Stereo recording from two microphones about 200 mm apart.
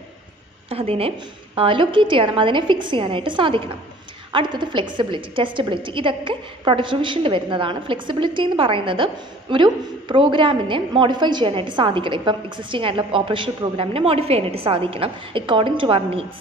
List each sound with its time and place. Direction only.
0.7 s a woman's voice: 30° right (ahead or behind)